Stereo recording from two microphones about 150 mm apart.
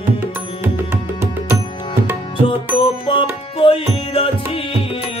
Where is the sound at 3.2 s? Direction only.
35° left (ahead or behind).